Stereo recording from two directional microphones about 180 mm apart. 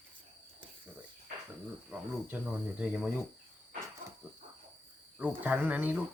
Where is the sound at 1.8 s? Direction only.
10° right (ahead or behind).